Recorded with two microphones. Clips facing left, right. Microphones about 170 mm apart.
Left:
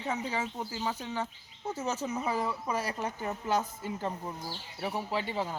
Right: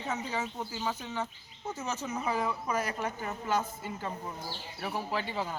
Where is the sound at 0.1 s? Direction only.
10° left (ahead or behind).